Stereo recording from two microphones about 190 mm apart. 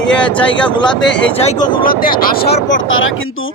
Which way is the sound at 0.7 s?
25° left (ahead or behind).